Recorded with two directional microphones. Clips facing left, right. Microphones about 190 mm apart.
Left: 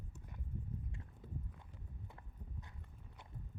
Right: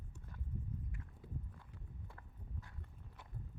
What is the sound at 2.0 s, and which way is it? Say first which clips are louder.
Horse: left 1 dB; 20° left (ahead or behind).